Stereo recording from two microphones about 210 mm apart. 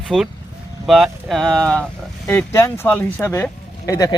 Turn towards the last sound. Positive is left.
turn(degrees=15)  # may be behind; listen again after turning